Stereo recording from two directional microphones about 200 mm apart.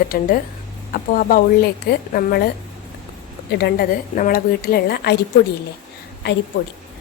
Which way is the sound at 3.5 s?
55° left (ahead or behind).